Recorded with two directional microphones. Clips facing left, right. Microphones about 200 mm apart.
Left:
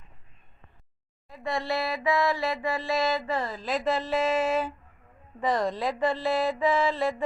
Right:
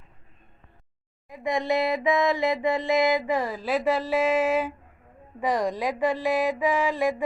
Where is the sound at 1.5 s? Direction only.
20° right (ahead or behind).